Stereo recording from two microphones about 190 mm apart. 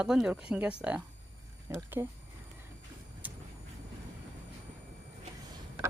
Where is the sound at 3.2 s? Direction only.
10° right (ahead or behind).